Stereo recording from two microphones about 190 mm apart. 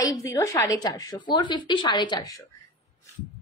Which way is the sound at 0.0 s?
15° left (ahead or behind).